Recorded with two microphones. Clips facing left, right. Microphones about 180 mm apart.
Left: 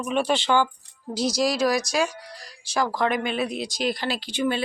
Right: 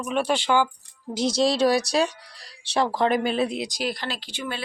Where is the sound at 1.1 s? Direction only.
25° right (ahead or behind).